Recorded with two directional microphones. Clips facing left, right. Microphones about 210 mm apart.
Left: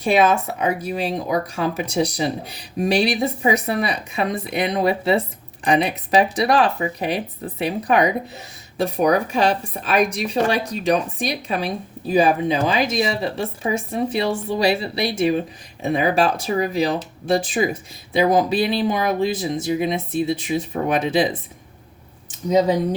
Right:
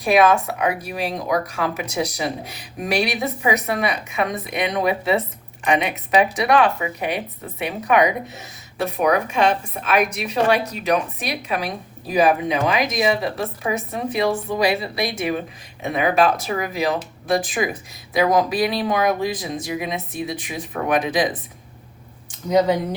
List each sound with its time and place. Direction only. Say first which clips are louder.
0.0 s speech: right 1 dB; 30° left (ahead or behind)